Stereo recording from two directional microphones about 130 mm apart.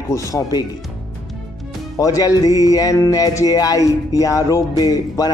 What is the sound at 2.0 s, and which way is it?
Music, 25° left (ahead or behind).